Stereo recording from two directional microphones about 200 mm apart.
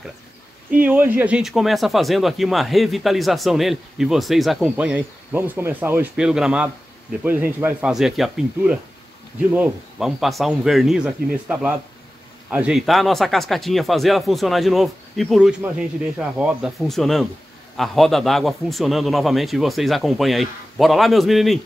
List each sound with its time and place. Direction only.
0.7 s speech: 10° right (ahead or behind)